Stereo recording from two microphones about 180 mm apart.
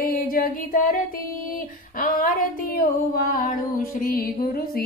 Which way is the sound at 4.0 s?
55° left (ahead or behind).